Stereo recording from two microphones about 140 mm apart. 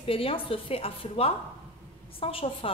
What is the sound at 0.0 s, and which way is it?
A woman's voice, 40° left (ahead or behind).